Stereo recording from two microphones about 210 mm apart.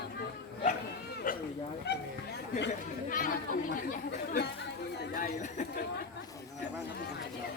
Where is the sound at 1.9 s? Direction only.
55° left (ahead or behind).